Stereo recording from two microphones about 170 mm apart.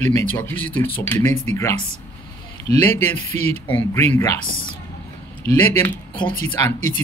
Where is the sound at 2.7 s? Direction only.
10° left (ahead or behind).